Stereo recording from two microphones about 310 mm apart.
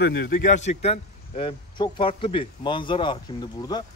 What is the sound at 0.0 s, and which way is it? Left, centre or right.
A man's voice, left.